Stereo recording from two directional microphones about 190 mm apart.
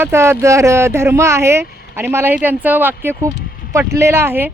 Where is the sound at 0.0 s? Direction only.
15° right (ahead or behind).